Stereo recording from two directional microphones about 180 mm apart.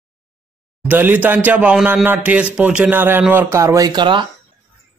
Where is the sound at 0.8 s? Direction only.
10° right (ahead or behind); by 4.3 s 25° right (ahead or behind).